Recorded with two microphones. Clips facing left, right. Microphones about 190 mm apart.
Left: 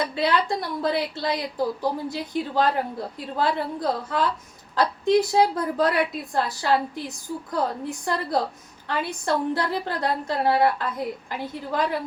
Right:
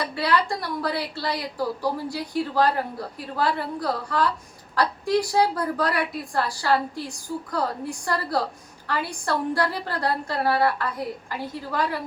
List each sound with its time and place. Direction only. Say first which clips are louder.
0.0 s a woman's voice: left 1 dB; 20° left (ahead or behind)